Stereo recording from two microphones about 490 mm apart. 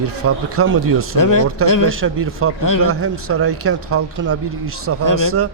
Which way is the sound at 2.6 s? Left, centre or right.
Left.